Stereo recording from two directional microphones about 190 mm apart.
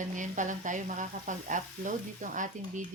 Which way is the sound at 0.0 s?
40° right (ahead or behind).